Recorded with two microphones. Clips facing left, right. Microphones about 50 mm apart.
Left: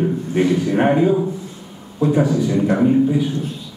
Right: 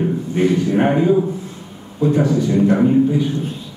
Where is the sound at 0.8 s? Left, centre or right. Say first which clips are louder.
Even; centre.